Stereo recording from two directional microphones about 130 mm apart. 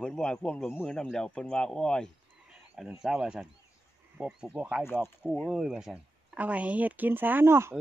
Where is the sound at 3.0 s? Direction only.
5° right (ahead or behind).